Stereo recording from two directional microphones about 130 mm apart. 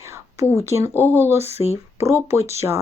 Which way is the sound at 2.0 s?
20° right (ahead or behind).